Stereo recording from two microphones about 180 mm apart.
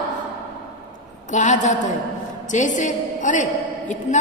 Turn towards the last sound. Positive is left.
turn(degrees=45)  # may be behind; listen again after turning